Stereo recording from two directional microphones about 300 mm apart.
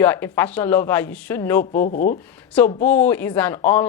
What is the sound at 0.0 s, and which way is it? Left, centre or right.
Speech, centre.